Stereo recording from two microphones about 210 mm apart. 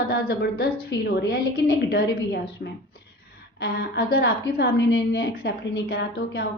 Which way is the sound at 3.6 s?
50° left (ahead or behind).